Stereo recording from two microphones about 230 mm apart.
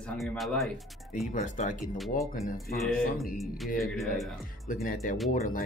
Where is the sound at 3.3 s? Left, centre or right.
Centre.